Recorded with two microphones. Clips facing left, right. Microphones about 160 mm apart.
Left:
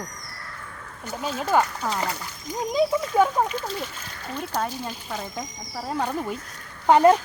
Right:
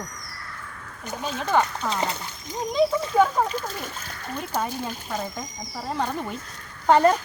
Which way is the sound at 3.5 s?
45° right (ahead or behind).